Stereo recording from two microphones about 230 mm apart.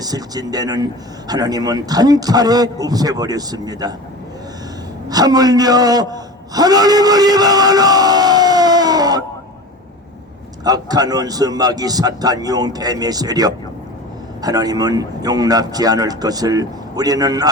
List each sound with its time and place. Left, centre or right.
0.0 s speech: centre
5.0 s a man's voice: centre
10.6 s speech: centre